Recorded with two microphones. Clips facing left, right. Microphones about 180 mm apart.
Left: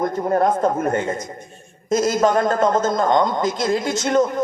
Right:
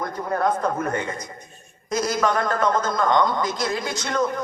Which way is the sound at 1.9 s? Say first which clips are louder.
Left 5 dB; 25° left (ahead or behind).